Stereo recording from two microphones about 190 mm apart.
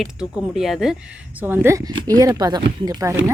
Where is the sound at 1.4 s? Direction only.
10° right (ahead or behind).